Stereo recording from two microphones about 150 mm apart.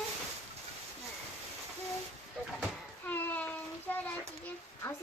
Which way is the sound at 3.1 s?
10° left (ahead or behind).